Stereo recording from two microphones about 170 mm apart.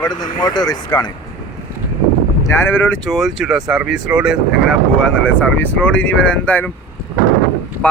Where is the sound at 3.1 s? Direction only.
Centre (ahead or behind).